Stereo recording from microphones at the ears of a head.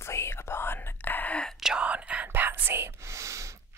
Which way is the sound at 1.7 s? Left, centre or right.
Right.